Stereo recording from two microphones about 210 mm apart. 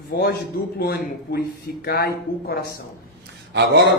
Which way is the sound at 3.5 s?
55° right (ahead or behind).